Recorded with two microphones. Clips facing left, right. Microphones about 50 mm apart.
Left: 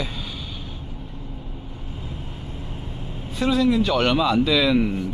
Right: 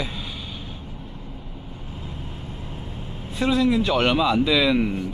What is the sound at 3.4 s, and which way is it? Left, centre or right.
A man's voice, centre.